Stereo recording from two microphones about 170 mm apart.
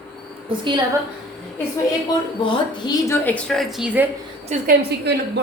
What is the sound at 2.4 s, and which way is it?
A woman's voice, 20° left (ahead or behind).